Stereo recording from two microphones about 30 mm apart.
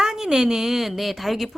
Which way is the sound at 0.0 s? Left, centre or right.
Centre.